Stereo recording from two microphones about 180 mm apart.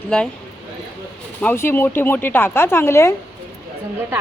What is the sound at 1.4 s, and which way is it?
Speech, 10° left (ahead or behind).